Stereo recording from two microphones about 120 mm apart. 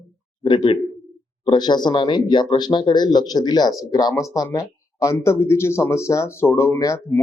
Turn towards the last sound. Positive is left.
turn(degrees=25)  # may be behind; listen again after turning